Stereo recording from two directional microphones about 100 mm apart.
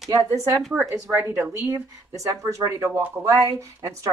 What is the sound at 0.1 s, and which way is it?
Speech, 35° right (ahead or behind).